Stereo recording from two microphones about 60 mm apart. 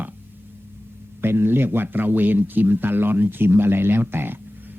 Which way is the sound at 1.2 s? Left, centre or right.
Right.